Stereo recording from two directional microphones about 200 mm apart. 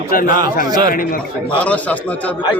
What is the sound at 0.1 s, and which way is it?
A man's voice, 45° left (ahead or behind).